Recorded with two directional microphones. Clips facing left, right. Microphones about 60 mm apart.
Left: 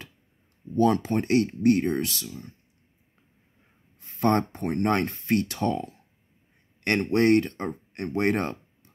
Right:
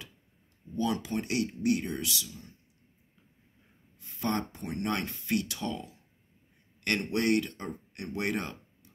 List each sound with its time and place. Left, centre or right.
0.7 s speech: left
4.0 s speech: left
7.1 s speech: left